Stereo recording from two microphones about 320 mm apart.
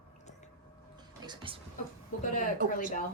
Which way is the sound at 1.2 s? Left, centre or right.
Centre.